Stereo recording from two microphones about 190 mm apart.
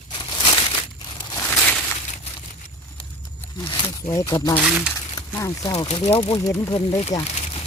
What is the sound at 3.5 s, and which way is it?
Speech, 25° left (ahead or behind).